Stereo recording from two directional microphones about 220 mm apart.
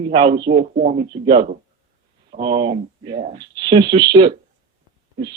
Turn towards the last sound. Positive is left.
turn(degrees=-20)  # may be behind; listen again after turning